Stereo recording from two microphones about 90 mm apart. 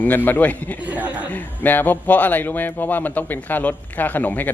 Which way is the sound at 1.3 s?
20° left (ahead or behind).